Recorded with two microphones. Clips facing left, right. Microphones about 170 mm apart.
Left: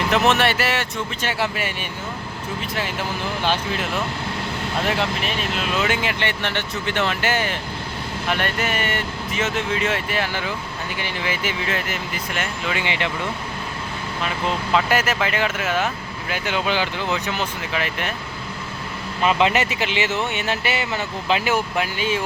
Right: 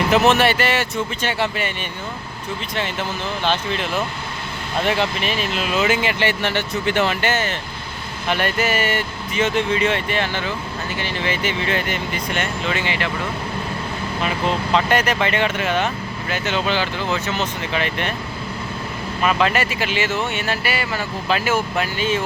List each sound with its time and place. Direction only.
0.1 s speech: centre (ahead or behind)
2.7 s speech: 10° left (ahead or behind); by 7.2 s 10° right (ahead or behind)
7.2 s speech: 10° left (ahead or behind)
8.3 s speech: centre (ahead or behind); by 13.1 s 15° left (ahead or behind)
14.7 s speech: 5° left (ahead or behind)
19.2 s speech: 20° left (ahead or behind)